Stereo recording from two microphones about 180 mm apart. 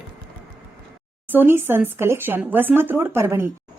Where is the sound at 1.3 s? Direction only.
10° right (ahead or behind).